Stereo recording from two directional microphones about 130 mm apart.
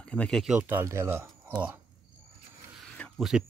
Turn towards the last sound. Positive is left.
turn(degrees=0)  # may be behind; listen again after turning